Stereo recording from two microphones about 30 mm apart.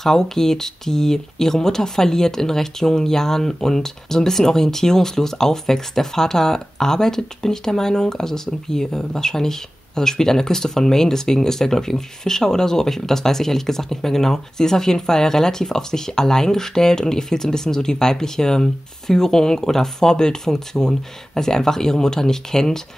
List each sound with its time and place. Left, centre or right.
0.0 s speech: centre